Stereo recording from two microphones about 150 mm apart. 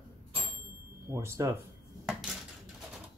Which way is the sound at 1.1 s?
20° right (ahead or behind).